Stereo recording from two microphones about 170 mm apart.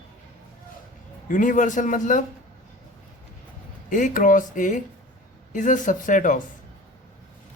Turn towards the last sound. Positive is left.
turn(degrees=50)  # may be behind; listen again after turning